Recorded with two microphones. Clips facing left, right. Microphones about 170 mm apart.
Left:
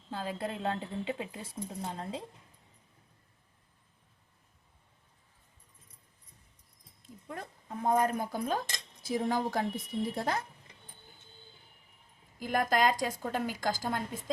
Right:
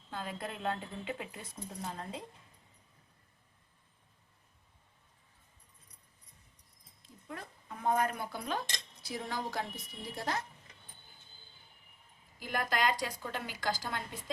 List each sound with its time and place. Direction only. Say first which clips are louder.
0.1 s a woman's voice: left 5 dB; 30° left (ahead or behind)
7.3 s a woman's voice: left 6 dB; 40° left (ahead or behind)
12.4 s a woman's voice: left 5 dB; 45° left (ahead or behind)